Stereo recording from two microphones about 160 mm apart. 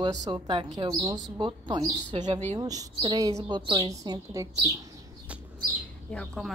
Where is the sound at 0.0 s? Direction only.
25° right (ahead or behind).